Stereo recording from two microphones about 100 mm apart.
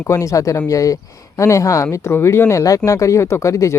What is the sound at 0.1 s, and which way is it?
A man's voice, 30° left (ahead or behind).